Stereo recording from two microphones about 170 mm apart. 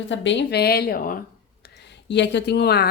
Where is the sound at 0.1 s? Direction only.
90° left; by 1.2 s 55° left (ahead or behind).